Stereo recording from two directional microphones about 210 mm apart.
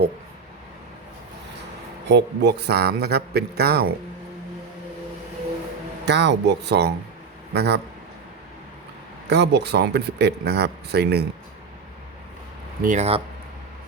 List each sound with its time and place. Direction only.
2.0 s speech: 55° right (ahead or behind)
6.1 s speech: 55° right (ahead or behind)
9.2 s speech: 55° right (ahead or behind)
12.8 s speech: 35° right (ahead or behind)